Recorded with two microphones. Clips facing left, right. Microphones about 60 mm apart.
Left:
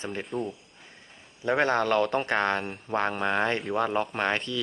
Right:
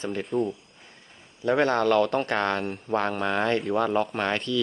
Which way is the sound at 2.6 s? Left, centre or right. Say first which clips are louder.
Right 5 dB; centre.